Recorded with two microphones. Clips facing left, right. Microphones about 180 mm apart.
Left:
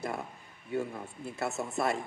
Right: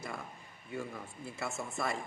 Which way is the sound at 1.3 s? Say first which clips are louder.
Left 5 dB; 65° left (ahead or behind).